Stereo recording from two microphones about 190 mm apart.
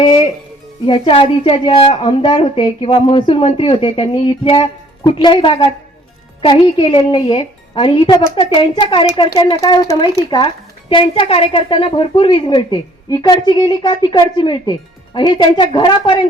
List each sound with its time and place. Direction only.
0.0 s a woman's voice: 25° left (ahead or behind)